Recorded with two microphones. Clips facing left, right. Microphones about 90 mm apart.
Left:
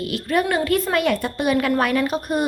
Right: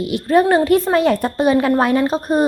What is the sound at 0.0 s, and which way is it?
A woman's voice, 25° right (ahead or behind).